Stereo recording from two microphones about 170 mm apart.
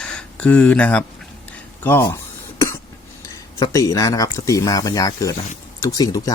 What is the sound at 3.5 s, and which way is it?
Speech, 20° left (ahead or behind).